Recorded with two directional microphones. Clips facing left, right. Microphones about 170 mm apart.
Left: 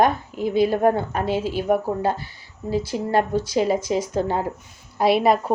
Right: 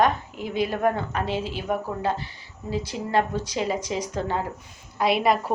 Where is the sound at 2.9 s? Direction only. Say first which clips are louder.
Left 3 dB; 40° left (ahead or behind).